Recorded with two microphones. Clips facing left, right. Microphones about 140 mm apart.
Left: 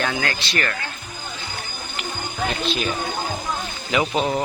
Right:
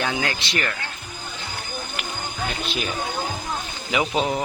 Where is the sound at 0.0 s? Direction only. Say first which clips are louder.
Left 1 dB; 15° right (ahead or behind).